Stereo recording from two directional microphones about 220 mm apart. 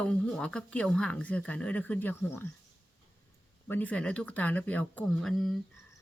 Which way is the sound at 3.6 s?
10° left (ahead or behind).